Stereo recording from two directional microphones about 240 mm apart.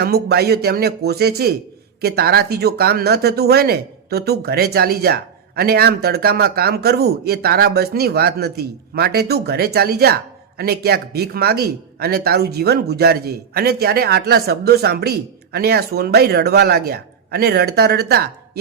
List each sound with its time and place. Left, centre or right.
0.0 s speech: right